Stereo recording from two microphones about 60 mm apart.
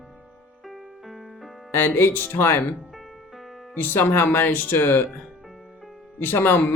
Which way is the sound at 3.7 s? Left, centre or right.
Left.